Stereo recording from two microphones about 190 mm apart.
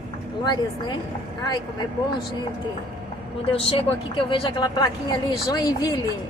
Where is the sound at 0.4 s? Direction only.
20° left (ahead or behind).